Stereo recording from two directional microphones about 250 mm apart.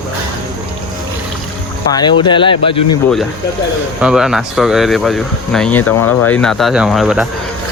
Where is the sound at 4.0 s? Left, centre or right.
Centre.